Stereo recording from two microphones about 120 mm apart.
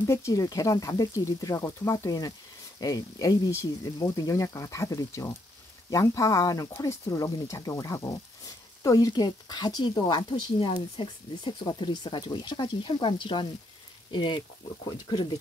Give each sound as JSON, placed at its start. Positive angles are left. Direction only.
{"t": 0.0, "sound": "speech", "side_deg": 25}